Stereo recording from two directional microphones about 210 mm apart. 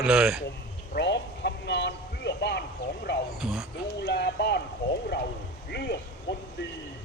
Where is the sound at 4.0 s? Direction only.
55° left (ahead or behind).